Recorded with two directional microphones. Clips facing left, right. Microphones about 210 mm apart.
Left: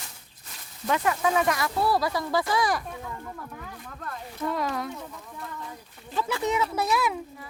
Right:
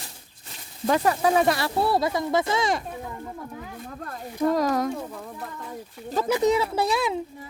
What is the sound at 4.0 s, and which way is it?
Speech, 35° right (ahead or behind).